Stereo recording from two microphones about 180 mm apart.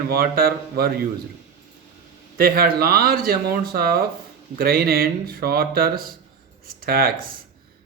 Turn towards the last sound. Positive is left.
turn(degrees=-55)  # may be behind; listen again after turning